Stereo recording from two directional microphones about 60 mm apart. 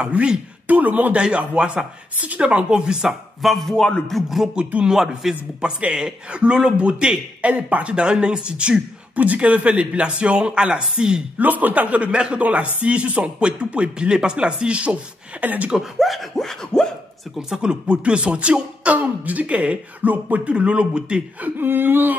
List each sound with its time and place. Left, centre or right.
0.0 s a man's voice: centre
3.4 s speech: centre
4.6 s speech: centre
4.9 s a man's voice: centre
5.3 s a man's voice: centre
7.9 s a man's voice: centre
11.3 s speech: right
15.7 s speech: centre
17.4 s speech: centre
21.4 s speech: right